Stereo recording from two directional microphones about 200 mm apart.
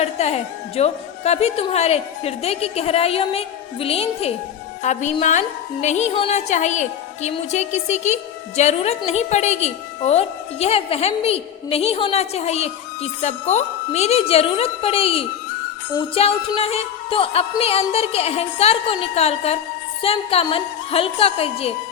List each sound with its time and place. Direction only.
0.0 s a woman's voice: 30° left (ahead or behind)
16.0 s music: 25° left (ahead or behind)